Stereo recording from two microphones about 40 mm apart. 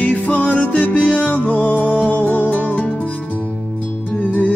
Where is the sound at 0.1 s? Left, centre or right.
Left.